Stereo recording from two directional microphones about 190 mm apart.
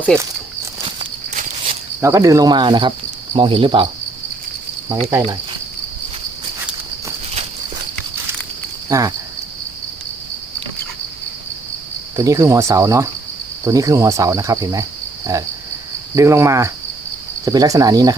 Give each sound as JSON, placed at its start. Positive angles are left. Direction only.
{"t": 0.9, "sound": "walk", "side_deg": -35}
{"t": 2.0, "sound": "speech", "side_deg": -15}
{"t": 8.9, "sound": "cricket", "side_deg": -15}
{"t": 12.1, "sound": "cricket", "side_deg": -15}
{"t": 17.4, "sound": "speech", "side_deg": -20}